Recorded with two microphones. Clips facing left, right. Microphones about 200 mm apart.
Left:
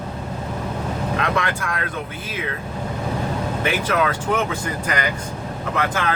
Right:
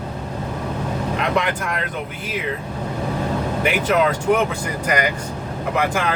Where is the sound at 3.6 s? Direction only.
15° right (ahead or behind).